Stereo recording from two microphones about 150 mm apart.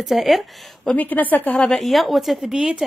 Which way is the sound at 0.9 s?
10° left (ahead or behind).